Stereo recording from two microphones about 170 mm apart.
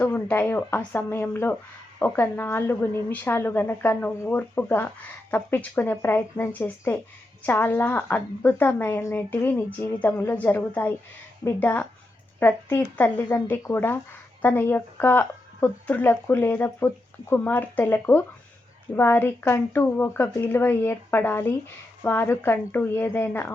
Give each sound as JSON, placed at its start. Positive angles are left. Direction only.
{"t": 0.0, "sound": "speech", "side_deg": 10}